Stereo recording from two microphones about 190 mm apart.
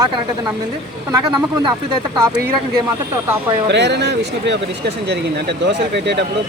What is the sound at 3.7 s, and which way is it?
Speech, 65° right (ahead or behind).